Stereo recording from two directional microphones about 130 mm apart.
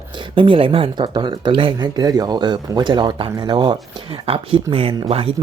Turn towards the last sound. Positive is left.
turn(degrees=-50)  # may be behind; listen again after turning